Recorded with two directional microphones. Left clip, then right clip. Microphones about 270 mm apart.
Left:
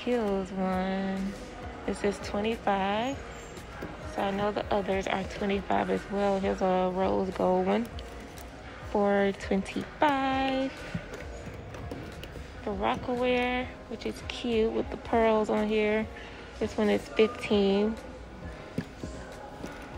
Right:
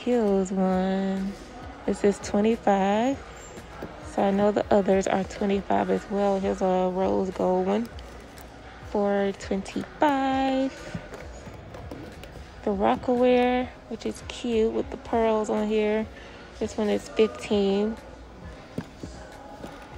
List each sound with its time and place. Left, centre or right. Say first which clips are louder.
0.0 s a woman's voice: right 5 dB; centre
8.9 s a woman's voice: right 1 dB; centre
12.6 s a woman's voice: right 6 dB; centre